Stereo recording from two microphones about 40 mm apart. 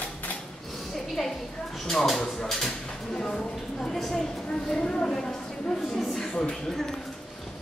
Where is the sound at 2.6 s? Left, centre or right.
Centre.